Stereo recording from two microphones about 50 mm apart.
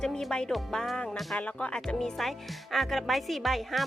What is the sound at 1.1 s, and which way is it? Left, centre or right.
Speech, centre.